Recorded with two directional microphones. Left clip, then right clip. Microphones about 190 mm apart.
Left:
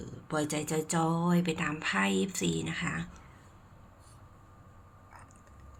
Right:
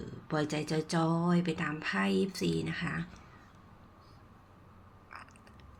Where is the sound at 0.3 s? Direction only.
Centre (ahead or behind).